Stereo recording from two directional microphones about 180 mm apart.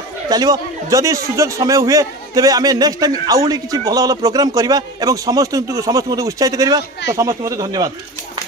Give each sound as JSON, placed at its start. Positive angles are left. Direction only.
{"t": 0.3, "sound": "a man's voice", "side_deg": -20}